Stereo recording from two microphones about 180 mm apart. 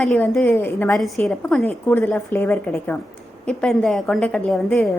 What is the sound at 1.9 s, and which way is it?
A woman's voice, 10° left (ahead or behind).